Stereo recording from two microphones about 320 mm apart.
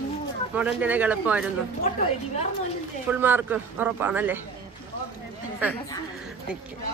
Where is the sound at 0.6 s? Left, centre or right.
Centre.